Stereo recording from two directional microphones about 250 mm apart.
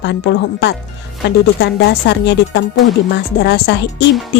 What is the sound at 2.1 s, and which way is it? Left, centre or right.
Speech, left.